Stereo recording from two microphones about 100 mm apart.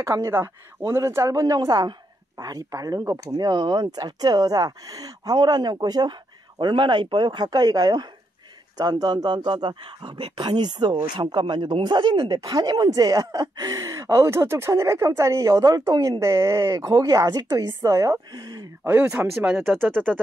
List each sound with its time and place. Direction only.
0.0 s a woman's voice: 30° right (ahead or behind)
19.3 s speech: 5° right (ahead or behind)
19.8 s speech: 20° right (ahead or behind)